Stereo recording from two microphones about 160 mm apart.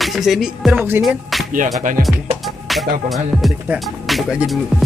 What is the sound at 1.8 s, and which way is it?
Speech, 55° right (ahead or behind).